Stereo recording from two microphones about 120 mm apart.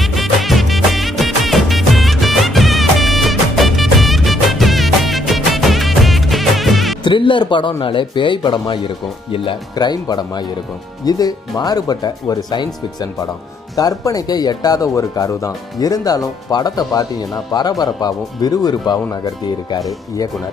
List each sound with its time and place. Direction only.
0.0 s music: centre (ahead or behind)
7.0 s speech: 40° left (ahead or behind)